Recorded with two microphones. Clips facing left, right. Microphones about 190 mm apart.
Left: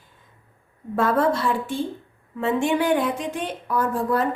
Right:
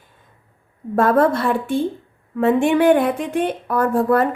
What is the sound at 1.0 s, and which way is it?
A woman's voice, 55° right (ahead or behind).